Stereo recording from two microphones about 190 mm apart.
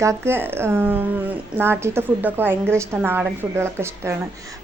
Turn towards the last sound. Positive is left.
turn(degrees=-15)  # may be behind; listen again after turning